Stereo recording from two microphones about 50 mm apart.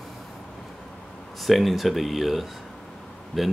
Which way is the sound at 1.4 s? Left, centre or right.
Centre.